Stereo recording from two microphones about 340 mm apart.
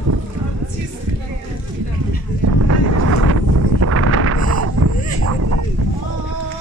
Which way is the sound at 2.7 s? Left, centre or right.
Right.